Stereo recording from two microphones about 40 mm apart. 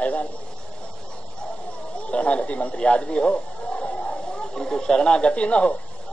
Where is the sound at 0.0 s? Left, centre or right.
Left.